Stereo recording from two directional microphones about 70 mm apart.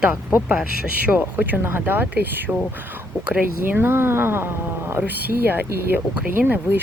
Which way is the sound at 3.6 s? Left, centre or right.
Right.